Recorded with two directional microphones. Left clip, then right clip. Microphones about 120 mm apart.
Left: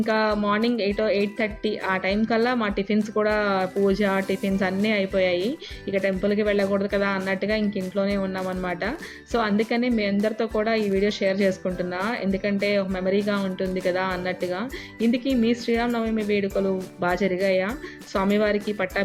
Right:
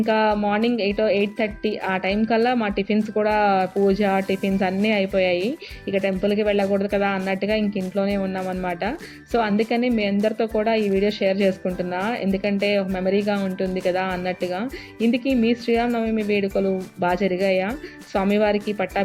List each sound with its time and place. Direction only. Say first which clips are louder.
0.0 s speech: right 3 dB; 40° right (ahead or behind)